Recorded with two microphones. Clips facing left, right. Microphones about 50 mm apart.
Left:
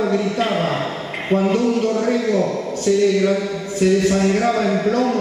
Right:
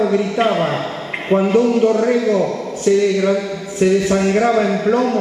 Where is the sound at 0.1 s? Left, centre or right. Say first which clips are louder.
Right 3 dB; centre.